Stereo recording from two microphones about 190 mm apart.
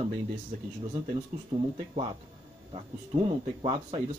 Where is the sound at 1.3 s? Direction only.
40° right (ahead or behind).